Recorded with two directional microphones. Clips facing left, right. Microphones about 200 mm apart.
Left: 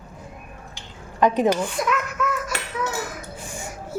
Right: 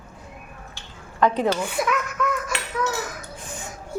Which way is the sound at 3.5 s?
10° left (ahead or behind).